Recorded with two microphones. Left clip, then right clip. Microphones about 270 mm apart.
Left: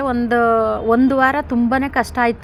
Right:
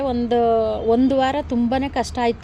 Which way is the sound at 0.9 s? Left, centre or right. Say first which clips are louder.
Left 4 dB; centre.